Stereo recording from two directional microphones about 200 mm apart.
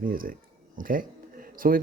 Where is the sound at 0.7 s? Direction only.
45° right (ahead or behind).